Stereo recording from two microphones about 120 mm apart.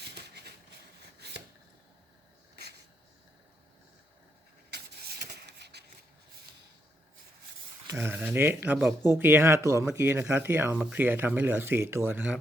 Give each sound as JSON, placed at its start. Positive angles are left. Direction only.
{"t": 8.0, "sound": "speech", "side_deg": -10}